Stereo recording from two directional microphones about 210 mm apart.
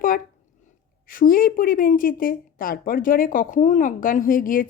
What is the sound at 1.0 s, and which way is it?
Speech, 40° left (ahead or behind).